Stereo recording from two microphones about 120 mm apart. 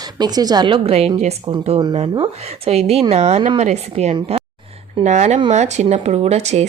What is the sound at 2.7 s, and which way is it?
Speech, 60° right (ahead or behind).